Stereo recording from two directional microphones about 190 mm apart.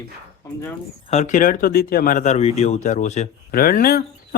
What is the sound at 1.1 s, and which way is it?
Speech, 40° left (ahead or behind).